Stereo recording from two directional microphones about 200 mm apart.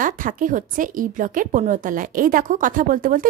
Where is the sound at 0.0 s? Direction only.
45° right (ahead or behind).